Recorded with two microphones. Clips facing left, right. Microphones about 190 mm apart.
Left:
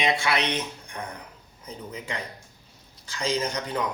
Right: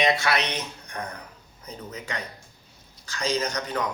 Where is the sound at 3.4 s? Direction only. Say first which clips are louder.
Even; 25° left (ahead or behind).